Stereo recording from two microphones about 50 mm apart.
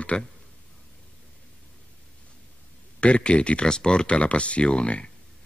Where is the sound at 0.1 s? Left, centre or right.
Centre.